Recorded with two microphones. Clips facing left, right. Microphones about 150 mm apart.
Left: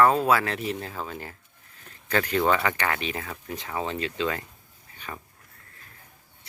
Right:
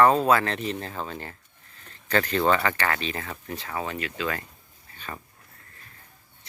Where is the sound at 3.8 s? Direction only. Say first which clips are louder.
Left 4 dB; 30° left (ahead or behind).